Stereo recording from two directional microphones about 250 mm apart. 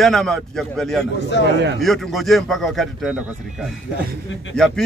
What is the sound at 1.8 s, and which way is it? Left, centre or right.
A man's voice, centre.